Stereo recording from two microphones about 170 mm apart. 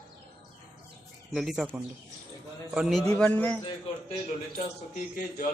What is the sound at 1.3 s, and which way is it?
Speech, centre (ahead or behind).